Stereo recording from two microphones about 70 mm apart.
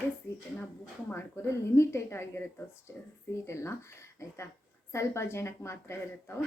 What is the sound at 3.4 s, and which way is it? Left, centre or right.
A woman's voice, left.